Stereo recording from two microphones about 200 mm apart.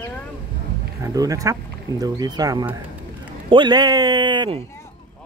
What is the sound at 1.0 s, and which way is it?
A man's voice, 15° right (ahead or behind).